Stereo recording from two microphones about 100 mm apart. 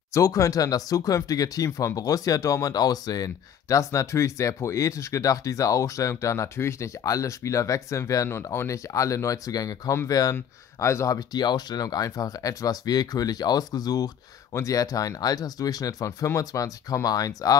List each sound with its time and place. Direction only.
0.1 s speech: 35° left (ahead or behind)